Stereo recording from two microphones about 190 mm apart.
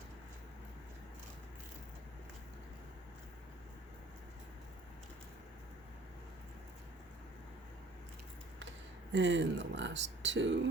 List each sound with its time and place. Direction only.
9.1 s speech: 70° right (ahead or behind)